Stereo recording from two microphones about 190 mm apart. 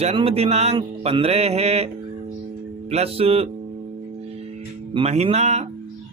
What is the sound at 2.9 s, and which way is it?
Mantra, 30° right (ahead or behind).